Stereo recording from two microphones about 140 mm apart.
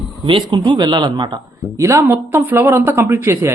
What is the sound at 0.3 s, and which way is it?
A man's voice, 35° right (ahead or behind).